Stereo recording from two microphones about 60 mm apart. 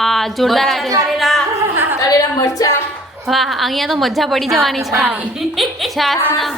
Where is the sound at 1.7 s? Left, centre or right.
Right.